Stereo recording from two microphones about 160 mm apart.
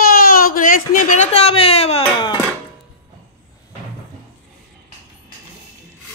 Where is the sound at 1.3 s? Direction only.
40° left (ahead or behind).